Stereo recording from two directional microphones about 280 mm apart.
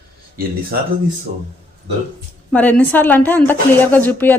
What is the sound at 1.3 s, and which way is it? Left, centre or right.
Speech, right.